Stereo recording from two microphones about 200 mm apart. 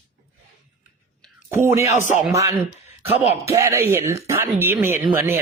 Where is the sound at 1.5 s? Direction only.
15° right (ahead or behind).